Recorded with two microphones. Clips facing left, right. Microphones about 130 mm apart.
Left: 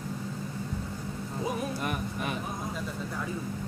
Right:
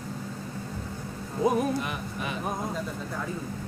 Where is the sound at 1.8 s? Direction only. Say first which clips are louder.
Left 1 dB; 50° left (ahead or behind).